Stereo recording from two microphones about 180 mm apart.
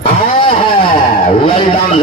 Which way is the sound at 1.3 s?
30° left (ahead or behind).